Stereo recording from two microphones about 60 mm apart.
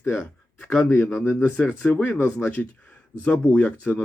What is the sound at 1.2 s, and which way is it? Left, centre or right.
Speech, left.